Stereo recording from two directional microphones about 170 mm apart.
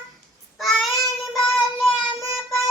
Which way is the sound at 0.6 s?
Centre (ahead or behind).